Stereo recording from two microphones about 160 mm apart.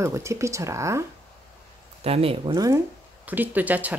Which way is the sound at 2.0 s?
35° right (ahead or behind).